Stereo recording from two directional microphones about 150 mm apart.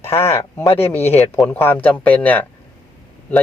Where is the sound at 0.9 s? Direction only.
15° left (ahead or behind).